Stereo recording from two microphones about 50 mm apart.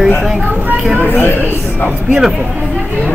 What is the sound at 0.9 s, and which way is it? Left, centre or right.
Speech, left.